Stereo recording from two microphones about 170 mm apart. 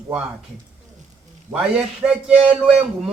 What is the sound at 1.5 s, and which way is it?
A man's voice, 5° right (ahead or behind).